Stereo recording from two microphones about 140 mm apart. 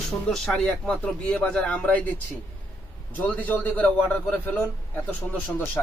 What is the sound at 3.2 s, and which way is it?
A man's voice, 10° left (ahead or behind).